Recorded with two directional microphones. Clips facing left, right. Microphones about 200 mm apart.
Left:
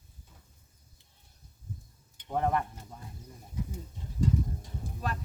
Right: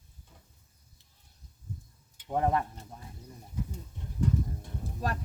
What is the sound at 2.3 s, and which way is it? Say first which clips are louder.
Speech: right 1 dB; 20° right (ahead or behind).